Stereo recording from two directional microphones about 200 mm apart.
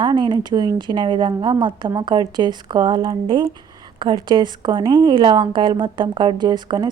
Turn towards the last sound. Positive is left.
turn(degrees=-20)  # may be behind; listen again after turning